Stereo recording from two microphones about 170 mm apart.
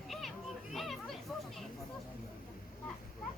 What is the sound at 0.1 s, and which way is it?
Children playing, centre (ahead or behind).